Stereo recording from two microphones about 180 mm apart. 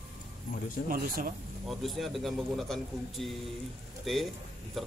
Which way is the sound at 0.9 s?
50° right (ahead or behind).